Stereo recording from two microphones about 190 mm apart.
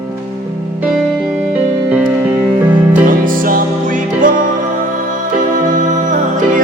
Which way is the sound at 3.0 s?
45° right (ahead or behind).